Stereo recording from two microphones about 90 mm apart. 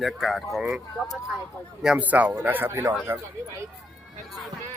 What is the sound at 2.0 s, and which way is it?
Speech, 15° right (ahead or behind).